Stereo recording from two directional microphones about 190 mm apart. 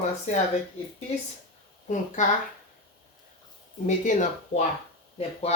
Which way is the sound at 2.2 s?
40° left (ahead or behind).